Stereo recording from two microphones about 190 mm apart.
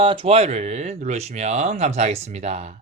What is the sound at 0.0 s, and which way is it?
Speech, 25° right (ahead or behind).